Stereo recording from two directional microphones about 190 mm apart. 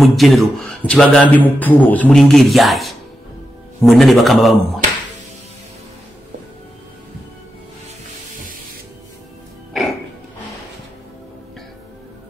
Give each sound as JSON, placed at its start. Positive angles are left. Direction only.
{"t": 0.0, "sound": "speech", "side_deg": 0}
{"t": 8.3, "sound": "spray", "side_deg": -45}
{"t": 9.8, "sound": "music", "side_deg": 0}